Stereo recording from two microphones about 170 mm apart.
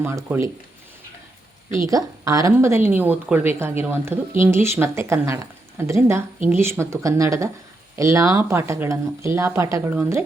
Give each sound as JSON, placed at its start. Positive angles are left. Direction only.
{"t": 0.0, "sound": "speech", "side_deg": -15}
{"t": 1.9, "sound": "speech", "side_deg": -20}